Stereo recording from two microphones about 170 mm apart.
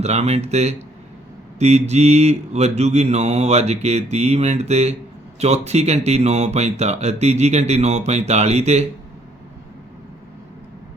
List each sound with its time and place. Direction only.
0.0 s speech: 40° right (ahead or behind)